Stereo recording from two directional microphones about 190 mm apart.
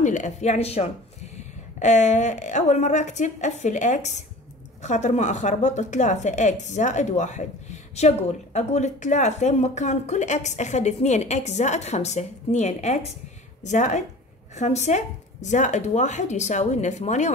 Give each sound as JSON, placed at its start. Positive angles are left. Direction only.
{"t": 0.0, "sound": "a woman's voice", "side_deg": 40}